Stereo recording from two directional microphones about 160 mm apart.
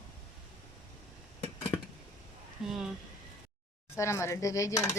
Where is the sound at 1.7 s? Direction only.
25° left (ahead or behind).